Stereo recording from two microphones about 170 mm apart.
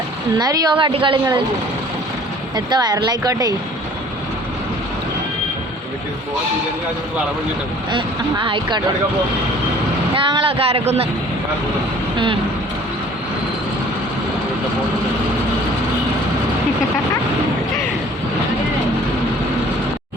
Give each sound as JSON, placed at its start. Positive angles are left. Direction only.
{"t": 0.3, "sound": "a woman's voice", "side_deg": -25}
{"t": 2.6, "sound": "a woman's voice", "side_deg": -25}
{"t": 7.9, "sound": "a woman's voice", "side_deg": -30}
{"t": 10.2, "sound": "speech", "side_deg": -30}
{"t": 12.1, "sound": "vehicle", "side_deg": -30}